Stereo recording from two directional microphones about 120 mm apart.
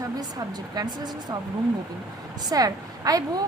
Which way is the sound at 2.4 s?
30° right (ahead or behind).